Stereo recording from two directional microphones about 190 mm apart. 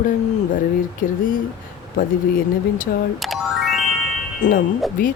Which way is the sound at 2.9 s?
50° left (ahead or behind).